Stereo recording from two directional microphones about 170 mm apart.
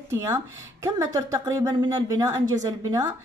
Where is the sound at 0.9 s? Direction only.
20° right (ahead or behind).